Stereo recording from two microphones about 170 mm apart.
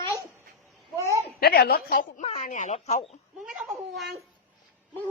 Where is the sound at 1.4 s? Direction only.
65° left (ahead or behind).